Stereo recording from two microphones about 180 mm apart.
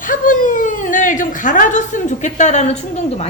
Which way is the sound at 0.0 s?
50° left (ahead or behind).